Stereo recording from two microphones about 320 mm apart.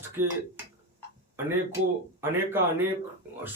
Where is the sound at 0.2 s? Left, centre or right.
Centre.